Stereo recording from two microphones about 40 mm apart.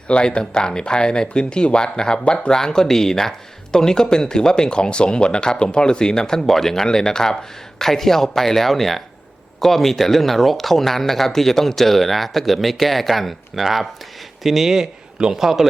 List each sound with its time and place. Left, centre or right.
0.1 s a man's voice: left; by 15.6 s centre